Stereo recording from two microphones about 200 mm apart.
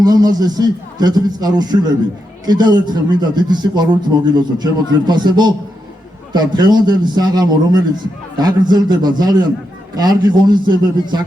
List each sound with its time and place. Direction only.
0.0 s a man's voice: 20° right (ahead or behind)